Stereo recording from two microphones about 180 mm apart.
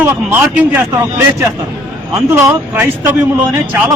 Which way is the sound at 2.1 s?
15° right (ahead or behind).